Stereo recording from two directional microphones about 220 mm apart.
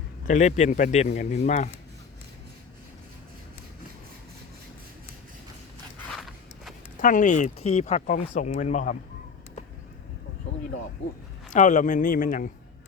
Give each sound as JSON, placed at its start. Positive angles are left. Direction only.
{"t": 0.3, "sound": "speech", "side_deg": 35}
{"t": 6.1, "sound": "a sound", "side_deg": 0}
{"t": 7.0, "sound": "speech", "side_deg": 35}
{"t": 11.5, "sound": "speech", "side_deg": 35}